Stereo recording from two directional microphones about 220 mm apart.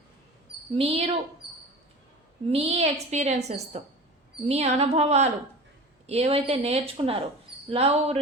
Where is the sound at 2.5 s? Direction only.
30° right (ahead or behind).